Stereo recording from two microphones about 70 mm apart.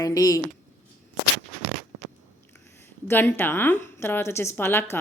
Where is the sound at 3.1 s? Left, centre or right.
Left.